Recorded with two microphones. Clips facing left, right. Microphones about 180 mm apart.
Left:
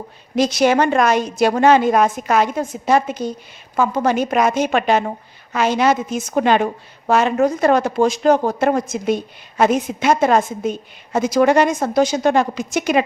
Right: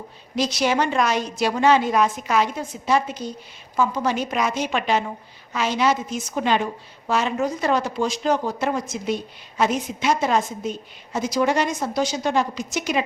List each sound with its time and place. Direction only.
0.3 s speech: 50° left (ahead or behind)